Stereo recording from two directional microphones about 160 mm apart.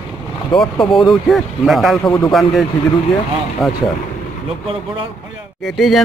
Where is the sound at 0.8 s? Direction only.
30° left (ahead or behind).